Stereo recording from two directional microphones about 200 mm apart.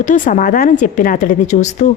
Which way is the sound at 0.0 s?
40° left (ahead or behind).